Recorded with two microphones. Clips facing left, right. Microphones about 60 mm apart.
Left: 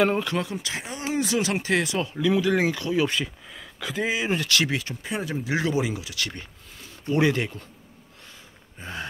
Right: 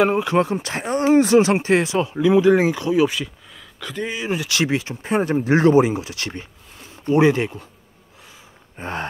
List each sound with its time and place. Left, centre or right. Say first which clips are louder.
0.0 s speech: right 4 dB; centre
0.4 s speech: right 9 dB; right; by 3.1 s centre
3.1 s speech: even; centre
4.4 s speech: right 4 dB; right
5.1 s speech: right 10 dB; right
8.7 s a sound: right 8 dB; right